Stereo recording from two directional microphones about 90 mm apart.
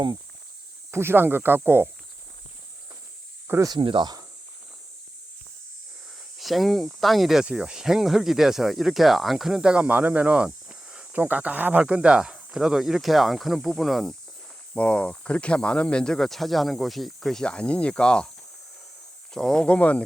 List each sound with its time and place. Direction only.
0.9 s speech: 30° right (ahead or behind)
3.8 s speech: 65° right (ahead or behind)
6.3 s speech: centre (ahead or behind)
14.8 s speech: 15° left (ahead or behind)
19.3 s speech: 5° left (ahead or behind)